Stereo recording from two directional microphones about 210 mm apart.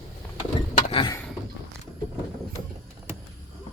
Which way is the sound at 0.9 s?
25° left (ahead or behind).